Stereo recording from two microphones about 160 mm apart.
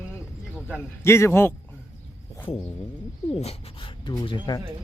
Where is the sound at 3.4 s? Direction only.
40° left (ahead or behind).